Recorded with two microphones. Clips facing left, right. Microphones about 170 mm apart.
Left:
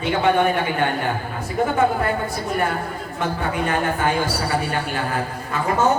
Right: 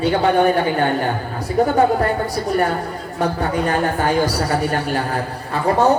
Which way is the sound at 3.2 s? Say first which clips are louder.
Right 4 dB; 40° right (ahead or behind).